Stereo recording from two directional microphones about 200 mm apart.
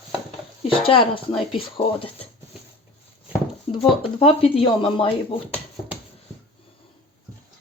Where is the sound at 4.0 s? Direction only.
30° left (ahead or behind).